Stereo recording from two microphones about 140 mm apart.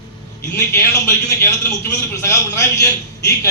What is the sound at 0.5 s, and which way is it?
A man's voice, 20° left (ahead or behind).